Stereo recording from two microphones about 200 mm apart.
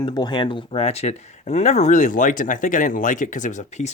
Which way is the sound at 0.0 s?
20° left (ahead or behind).